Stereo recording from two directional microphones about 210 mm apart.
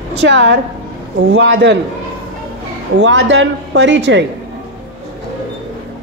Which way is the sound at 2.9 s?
60° right (ahead or behind).